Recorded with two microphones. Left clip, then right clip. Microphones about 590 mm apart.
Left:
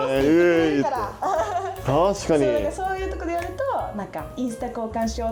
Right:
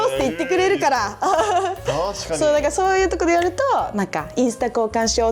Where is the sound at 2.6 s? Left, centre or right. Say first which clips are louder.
Right 8 dB; right.